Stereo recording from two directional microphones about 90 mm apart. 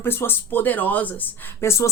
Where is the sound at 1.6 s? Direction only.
30° left (ahead or behind).